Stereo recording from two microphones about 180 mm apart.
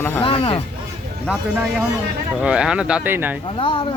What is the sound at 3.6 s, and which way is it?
Speech, 30° left (ahead or behind).